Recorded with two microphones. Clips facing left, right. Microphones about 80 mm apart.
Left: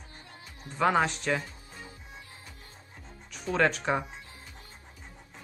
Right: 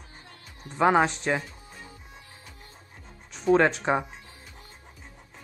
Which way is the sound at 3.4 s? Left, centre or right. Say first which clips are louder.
Right 5 dB; right.